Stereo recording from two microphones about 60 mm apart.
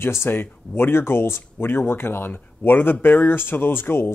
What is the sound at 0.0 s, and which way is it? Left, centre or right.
A man's voice, left.